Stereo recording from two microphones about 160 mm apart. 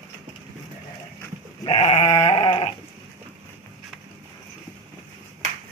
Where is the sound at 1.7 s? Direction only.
45° left (ahead or behind).